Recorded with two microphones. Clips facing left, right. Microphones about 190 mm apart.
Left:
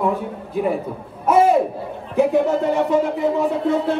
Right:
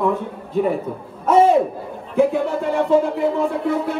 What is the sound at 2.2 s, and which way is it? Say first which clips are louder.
Speech: left 1 dB; 20° left (ahead or behind).